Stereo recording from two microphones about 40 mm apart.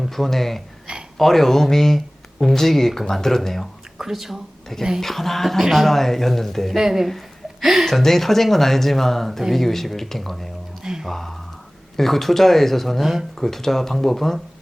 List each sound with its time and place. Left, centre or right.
0.0 s speech: centre
0.9 s a sound: right
1.2 s speech: centre
3.9 s speech: centre
4.9 s speech: centre
6.7 s speech: centre
7.9 s speech: centre